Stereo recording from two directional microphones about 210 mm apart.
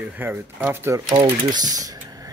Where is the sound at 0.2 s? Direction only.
10° right (ahead or behind).